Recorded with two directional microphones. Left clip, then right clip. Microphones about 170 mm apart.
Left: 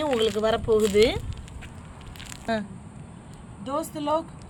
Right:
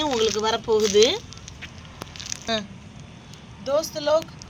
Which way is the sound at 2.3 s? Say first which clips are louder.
Right 8 dB; 80° left.